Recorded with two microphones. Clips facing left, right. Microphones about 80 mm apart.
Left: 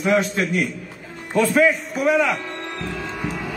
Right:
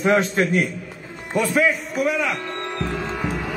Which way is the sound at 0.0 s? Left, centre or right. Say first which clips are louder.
Right 1 dB; right.